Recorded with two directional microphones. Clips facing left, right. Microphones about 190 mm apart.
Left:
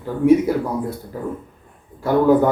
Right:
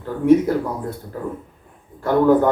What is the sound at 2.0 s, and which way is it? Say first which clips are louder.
Speech: even; 10° left (ahead or behind).